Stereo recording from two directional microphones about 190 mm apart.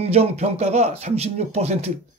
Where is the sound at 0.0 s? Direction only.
35° right (ahead or behind).